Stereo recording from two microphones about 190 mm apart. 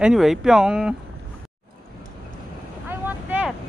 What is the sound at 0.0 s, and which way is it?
Speech, centre (ahead or behind).